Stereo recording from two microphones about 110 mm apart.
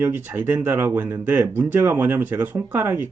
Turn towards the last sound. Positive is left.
turn(degrees=-20)  # may be behind; listen again after turning